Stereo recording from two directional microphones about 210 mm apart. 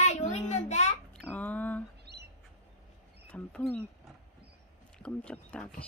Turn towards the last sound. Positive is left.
turn(degrees=5)  # may be behind; listen again after turning